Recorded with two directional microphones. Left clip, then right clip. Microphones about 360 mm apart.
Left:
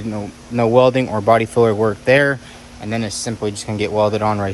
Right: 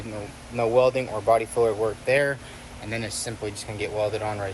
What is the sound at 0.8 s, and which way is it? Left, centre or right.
Speech, left.